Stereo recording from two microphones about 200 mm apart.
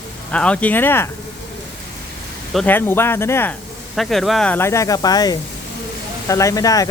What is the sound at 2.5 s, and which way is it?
Speech, 5° left (ahead or behind).